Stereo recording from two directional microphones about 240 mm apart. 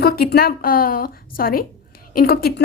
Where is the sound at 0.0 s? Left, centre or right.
Left.